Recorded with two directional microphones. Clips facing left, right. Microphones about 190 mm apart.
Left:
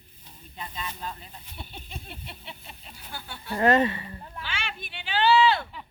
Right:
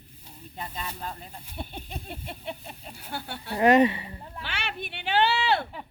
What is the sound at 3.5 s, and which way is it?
Speech, 15° right (ahead or behind).